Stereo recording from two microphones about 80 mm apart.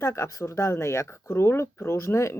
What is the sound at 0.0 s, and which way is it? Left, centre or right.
Speech, left.